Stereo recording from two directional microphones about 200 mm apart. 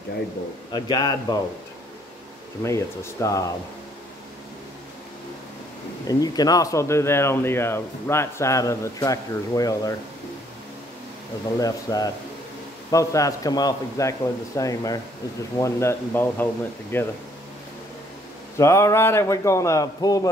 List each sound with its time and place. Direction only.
0.7 s a man's voice: 20° left (ahead or behind)
2.6 s speech: 15° left (ahead or behind)
6.0 s speech: 20° left (ahead or behind)
11.6 s a man's voice: 20° left (ahead or behind)
18.6 s speech: 15° left (ahead or behind)